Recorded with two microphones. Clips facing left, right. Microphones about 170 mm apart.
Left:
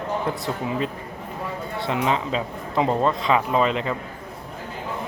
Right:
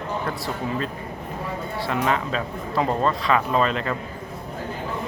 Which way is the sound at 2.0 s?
20° left (ahead or behind).